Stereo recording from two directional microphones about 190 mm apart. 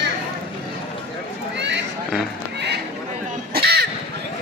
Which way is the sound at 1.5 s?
65° right (ahead or behind).